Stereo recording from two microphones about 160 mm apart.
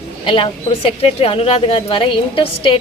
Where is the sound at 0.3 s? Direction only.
35° left (ahead or behind).